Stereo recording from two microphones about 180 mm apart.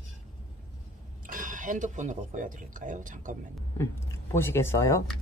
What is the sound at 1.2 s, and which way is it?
Speech, 45° right (ahead or behind).